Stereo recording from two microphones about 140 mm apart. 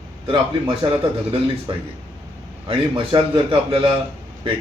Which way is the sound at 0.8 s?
35° right (ahead or behind).